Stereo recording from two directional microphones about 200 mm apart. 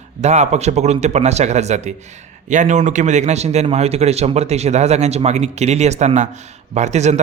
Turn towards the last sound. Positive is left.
turn(degrees=-35)  # may be behind; listen again after turning